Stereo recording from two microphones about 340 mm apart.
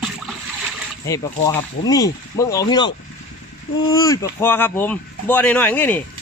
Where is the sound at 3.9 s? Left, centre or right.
Centre.